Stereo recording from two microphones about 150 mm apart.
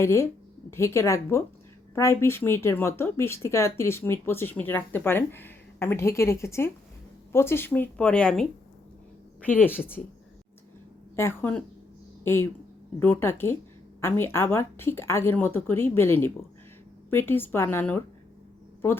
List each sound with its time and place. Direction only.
0.0 s a woman's voice: 20° left (ahead or behind)
11.2 s speech: 15° left (ahead or behind)